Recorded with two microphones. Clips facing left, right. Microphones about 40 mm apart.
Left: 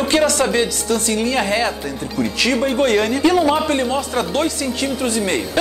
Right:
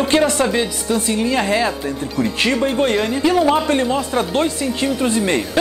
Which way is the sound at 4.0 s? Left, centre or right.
Right.